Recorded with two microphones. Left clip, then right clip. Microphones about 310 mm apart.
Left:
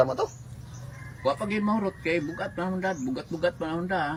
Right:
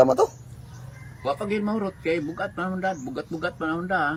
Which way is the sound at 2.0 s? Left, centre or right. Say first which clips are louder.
Right 2 dB; centre.